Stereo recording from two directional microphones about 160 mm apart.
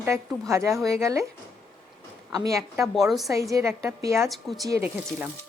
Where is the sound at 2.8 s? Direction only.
Centre (ahead or behind).